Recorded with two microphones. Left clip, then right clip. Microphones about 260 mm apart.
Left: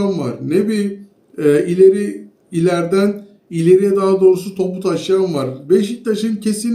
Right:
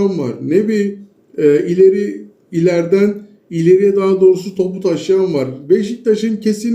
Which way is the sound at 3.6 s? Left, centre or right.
Centre.